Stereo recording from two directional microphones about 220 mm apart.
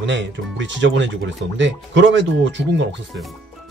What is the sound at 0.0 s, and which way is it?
Speech, 55° right (ahead or behind).